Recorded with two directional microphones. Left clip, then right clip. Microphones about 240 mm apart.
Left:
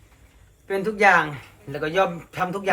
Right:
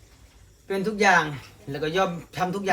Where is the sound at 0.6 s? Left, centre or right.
Centre.